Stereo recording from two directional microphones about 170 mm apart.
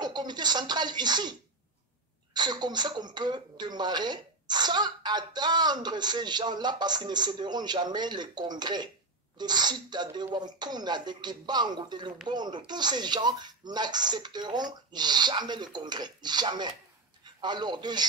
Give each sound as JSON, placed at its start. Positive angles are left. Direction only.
{"t": 0.0, "sound": "speech", "side_deg": -25}
{"t": 2.3, "sound": "a man's voice", "side_deg": -25}